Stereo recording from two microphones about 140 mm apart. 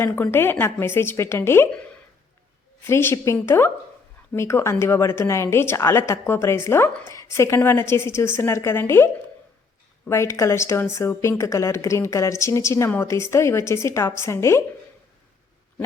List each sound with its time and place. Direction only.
0.0 s a woman's voice: 15° left (ahead or behind)
2.8 s a woman's voice: 15° left (ahead or behind)
10.1 s a woman's voice: 20° left (ahead or behind)